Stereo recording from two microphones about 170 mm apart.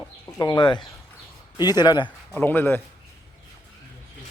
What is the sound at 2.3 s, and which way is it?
Speech, 10° left (ahead or behind).